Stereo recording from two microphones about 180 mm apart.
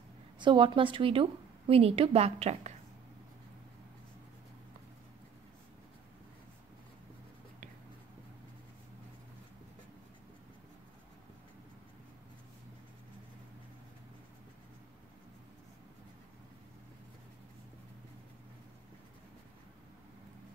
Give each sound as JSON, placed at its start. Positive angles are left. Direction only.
{"t": 0.4, "sound": "a woman's voice", "side_deg": -25}